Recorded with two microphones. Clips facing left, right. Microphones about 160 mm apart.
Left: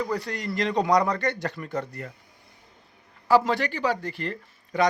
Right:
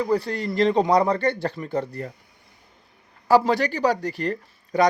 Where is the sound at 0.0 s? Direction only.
30° right (ahead or behind).